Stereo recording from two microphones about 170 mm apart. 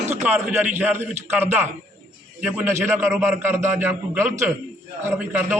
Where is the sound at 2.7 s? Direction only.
15° right (ahead or behind).